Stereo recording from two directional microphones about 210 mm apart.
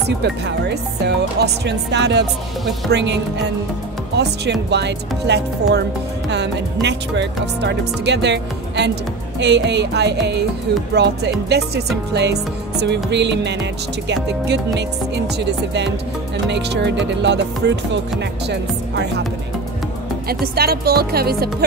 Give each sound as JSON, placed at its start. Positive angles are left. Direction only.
{"t": 0.0, "sound": "speech", "side_deg": -55}
{"t": 20.2, "sound": "speech", "side_deg": -45}